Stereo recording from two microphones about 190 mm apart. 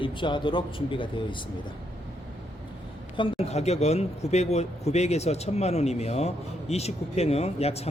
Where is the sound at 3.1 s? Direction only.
30° left (ahead or behind).